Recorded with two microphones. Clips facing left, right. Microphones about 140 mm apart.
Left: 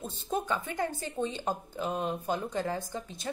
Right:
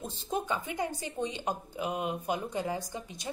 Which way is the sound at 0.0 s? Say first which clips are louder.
Left 1 dB; 10° right (ahead or behind).